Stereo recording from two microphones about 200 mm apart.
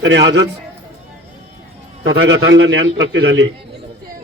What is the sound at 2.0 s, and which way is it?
A man's voice, 65° right (ahead or behind).